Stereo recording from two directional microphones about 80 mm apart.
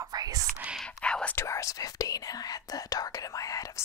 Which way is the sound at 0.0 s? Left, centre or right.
Right.